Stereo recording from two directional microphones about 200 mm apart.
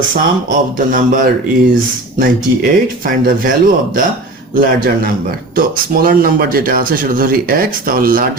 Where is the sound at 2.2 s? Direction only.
45° right (ahead or behind).